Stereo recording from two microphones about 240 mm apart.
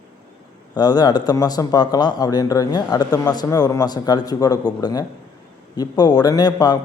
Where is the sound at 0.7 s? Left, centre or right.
Centre.